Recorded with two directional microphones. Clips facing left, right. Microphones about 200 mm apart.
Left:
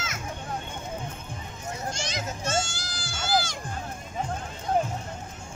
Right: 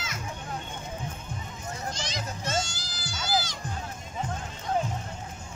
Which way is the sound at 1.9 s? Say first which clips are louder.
Left 2 dB; 50° left (ahead or behind).